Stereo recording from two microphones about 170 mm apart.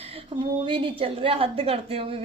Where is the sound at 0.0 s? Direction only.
35° right (ahead or behind).